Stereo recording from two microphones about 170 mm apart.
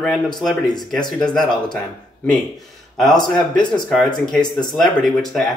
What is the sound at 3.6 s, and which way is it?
Speech, 25° left (ahead or behind).